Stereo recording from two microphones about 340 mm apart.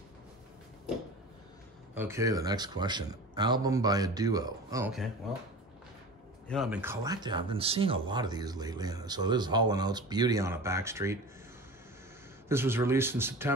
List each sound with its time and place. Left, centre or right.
2.0 s speech: centre
6.5 s speech: centre
12.4 s speech: centre